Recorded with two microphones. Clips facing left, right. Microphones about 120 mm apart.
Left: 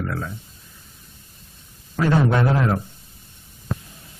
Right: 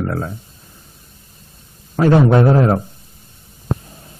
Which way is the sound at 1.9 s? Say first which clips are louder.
Right 7 dB; 35° right (ahead or behind).